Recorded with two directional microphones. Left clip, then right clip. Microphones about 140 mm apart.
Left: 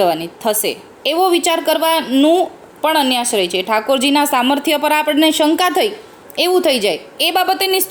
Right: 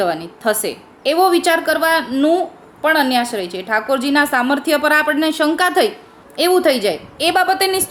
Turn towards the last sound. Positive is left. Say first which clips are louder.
# even
turn(degrees=25)  # may be behind; listen again after turning